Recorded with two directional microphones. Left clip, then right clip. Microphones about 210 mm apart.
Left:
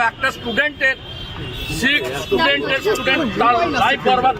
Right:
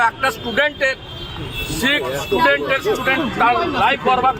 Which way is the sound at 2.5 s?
5° right (ahead or behind).